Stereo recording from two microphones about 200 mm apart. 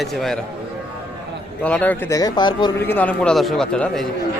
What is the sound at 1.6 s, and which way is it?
Speech, 5° left (ahead or behind).